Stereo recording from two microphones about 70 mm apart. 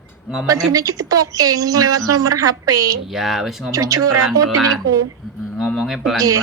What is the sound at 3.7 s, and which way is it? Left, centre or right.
Speech, right.